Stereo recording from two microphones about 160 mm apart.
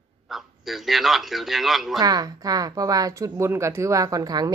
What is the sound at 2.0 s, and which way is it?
Speech, 20° right (ahead or behind).